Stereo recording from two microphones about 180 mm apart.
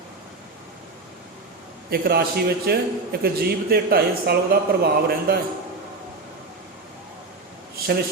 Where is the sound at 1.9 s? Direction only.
60° right (ahead or behind).